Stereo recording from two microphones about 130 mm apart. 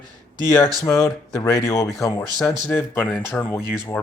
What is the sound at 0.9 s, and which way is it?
Speech, 25° left (ahead or behind).